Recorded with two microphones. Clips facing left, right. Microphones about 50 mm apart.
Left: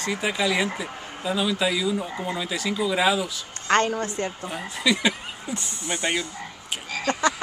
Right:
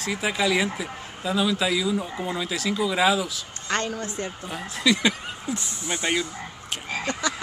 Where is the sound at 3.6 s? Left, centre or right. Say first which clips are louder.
Left 6 dB; left.